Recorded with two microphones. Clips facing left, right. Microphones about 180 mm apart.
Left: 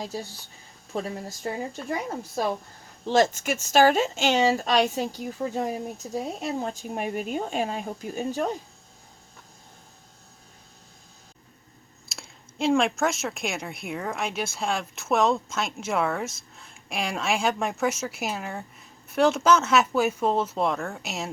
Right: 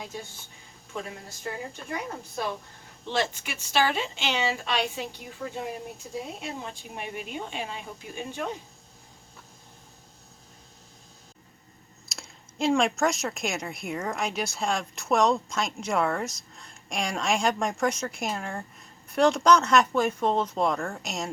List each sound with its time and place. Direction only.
0.0 s speech: 35° left (ahead or behind)
3.1 s speech: 45° left (ahead or behind)
12.0 s speech: centre (ahead or behind)